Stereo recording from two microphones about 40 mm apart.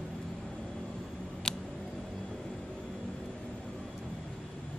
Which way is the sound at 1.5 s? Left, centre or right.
Centre.